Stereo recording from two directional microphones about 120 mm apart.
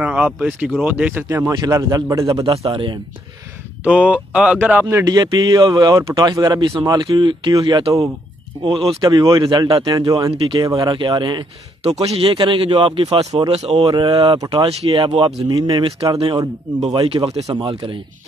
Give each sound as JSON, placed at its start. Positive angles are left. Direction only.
{"t": 0.0, "sound": "speech", "side_deg": -10}
{"t": 2.5, "sound": "speech", "side_deg": -45}
{"t": 3.8, "sound": "speech", "side_deg": -10}
{"t": 5.0, "sound": "speech", "side_deg": -30}
{"t": 11.8, "sound": "speech", "side_deg": -60}
{"t": 13.8, "sound": "speech", "side_deg": -40}
{"t": 14.5, "sound": "speech", "side_deg": -55}
{"t": 17.6, "sound": "speech", "side_deg": -45}